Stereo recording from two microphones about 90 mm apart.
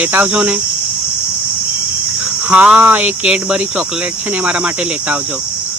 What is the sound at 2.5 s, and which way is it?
Speech, 15° right (ahead or behind).